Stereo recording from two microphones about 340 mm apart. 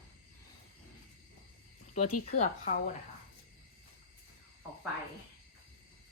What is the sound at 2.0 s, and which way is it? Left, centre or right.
Speech, left.